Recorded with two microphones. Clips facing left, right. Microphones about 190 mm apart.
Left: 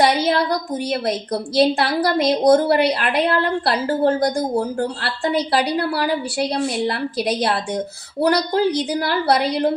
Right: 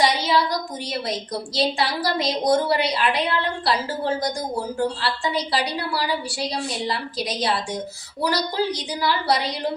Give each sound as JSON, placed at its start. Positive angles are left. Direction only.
{"t": 0.0, "sound": "a woman's voice", "side_deg": 55}